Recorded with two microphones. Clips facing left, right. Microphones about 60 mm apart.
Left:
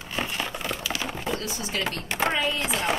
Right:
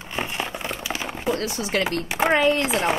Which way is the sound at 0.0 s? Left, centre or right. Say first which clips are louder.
Right 2 dB; centre.